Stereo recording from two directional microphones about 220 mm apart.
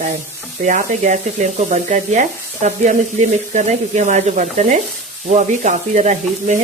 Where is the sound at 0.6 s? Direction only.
35° right (ahead or behind).